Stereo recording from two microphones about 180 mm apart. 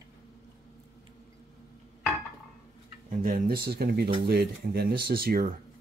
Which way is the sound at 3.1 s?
50° right (ahead or behind).